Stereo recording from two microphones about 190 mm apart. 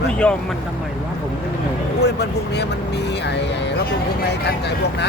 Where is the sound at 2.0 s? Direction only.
60° left (ahead or behind).